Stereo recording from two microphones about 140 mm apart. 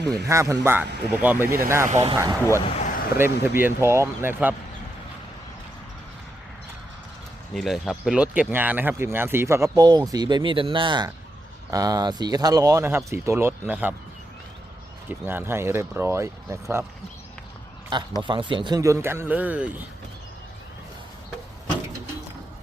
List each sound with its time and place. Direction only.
0.1 s speech: 20° right (ahead or behind)
2.7 s a sound: 70° left (ahead or behind)
3.2 s a man's voice: 15° right (ahead or behind)
7.5 s a man's voice: centre (ahead or behind)
15.3 s speech: 15° right (ahead or behind)
18.2 s a man's voice: 35° right (ahead or behind); by 19.8 s 10° right (ahead or behind)